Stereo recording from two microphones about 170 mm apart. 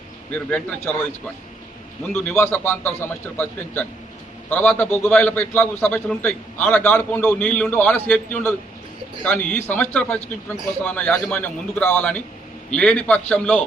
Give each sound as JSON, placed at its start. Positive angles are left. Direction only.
{"t": 0.3, "sound": "a man's voice", "side_deg": 10}
{"t": 2.2, "sound": "a man's voice", "side_deg": 10}